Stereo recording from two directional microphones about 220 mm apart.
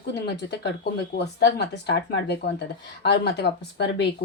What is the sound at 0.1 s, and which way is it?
Speech, 50° left (ahead or behind).